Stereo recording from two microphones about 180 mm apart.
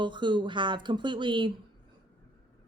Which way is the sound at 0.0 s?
25° right (ahead or behind).